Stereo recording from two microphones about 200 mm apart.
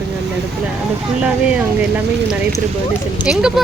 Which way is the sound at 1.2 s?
10° right (ahead or behind).